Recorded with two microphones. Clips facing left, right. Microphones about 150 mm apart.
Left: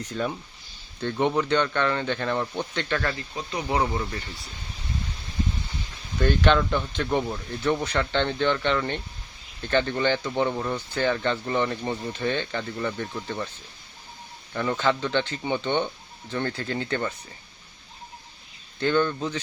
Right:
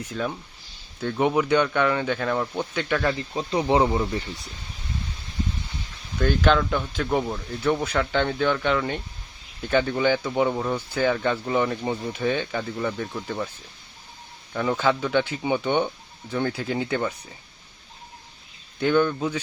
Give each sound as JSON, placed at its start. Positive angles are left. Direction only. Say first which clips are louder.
{"t": 0.0, "sound": "speech", "louder": "even", "side_deg": 0}
{"t": 3.2, "sound": "speech", "louder": "right 6 dB", "side_deg": -30}
{"t": 6.1, "sound": "speech", "louder": "right 1 dB", "side_deg": 0}
{"t": 14.5, "sound": "speech", "louder": "right 2 dB", "side_deg": -5}
{"t": 18.8, "sound": "speech", "louder": "right 2 dB", "side_deg": -10}